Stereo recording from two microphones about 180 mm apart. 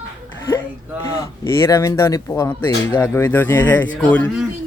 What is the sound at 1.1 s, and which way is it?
Speech, 15° left (ahead or behind).